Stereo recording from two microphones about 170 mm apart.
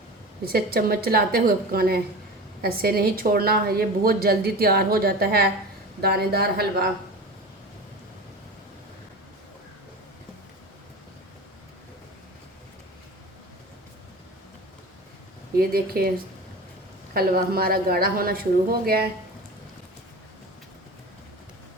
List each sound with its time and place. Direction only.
0.4 s a woman's voice: 65° right (ahead or behind)
15.5 s a woman's voice: 60° right (ahead or behind)